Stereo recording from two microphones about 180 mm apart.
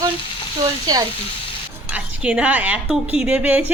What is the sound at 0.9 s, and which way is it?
Speech, 20° right (ahead or behind).